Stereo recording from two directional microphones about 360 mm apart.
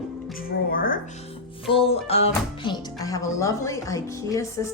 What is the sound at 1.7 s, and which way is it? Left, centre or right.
Music, centre.